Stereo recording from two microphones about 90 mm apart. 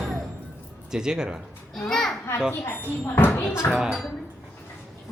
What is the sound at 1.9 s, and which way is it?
Children playing, 5° left (ahead or behind).